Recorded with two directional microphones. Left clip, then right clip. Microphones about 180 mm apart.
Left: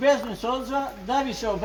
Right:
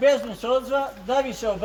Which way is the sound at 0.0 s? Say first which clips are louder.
Right 2 dB; 20° right (ahead or behind).